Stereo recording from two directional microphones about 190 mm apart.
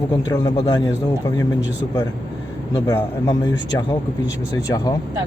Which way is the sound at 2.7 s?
20° left (ahead or behind).